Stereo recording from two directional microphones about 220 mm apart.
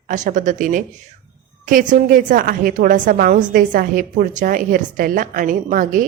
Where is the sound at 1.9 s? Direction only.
40° right (ahead or behind).